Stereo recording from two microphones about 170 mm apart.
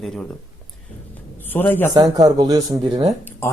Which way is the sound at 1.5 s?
10° left (ahead or behind).